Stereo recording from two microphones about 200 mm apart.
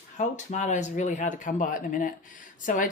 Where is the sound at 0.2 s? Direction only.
40° left (ahead or behind).